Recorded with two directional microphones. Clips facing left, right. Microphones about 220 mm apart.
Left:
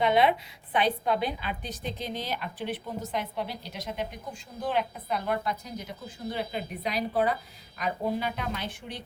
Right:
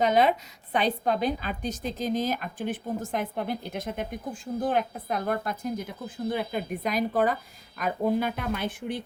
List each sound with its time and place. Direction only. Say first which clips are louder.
0.0 s a woman's voice: right 1 dB; 40° right (ahead or behind)